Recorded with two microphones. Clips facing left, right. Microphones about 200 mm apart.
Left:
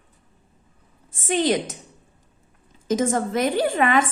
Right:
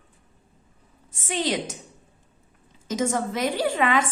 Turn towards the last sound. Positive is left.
turn(degrees=50)  # may be behind; listen again after turning